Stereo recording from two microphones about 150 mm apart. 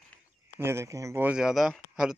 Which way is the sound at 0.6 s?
15° right (ahead or behind).